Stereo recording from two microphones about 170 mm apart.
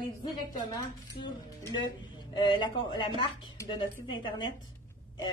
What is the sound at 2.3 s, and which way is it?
A woman's voice, 25° left (ahead or behind).